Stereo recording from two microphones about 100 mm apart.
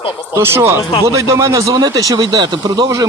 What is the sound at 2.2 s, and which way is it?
Speech, 50° right (ahead or behind).